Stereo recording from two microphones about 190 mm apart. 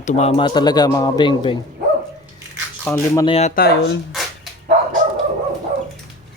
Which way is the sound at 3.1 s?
25° left (ahead or behind).